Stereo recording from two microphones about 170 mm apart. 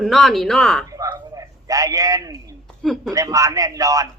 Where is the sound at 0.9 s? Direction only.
20° right (ahead or behind).